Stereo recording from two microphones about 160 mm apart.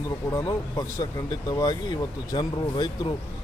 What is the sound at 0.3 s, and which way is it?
A man's voice, 20° left (ahead or behind).